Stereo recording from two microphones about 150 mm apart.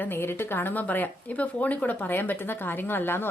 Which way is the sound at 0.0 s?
15° left (ahead or behind).